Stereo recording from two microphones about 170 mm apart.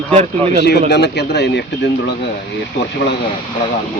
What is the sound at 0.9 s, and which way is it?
Speech, 75° left (ahead or behind).